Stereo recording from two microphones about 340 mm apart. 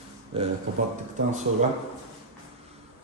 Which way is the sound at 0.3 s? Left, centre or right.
Centre.